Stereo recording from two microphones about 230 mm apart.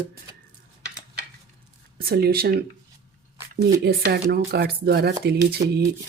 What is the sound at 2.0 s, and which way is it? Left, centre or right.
Speech, right.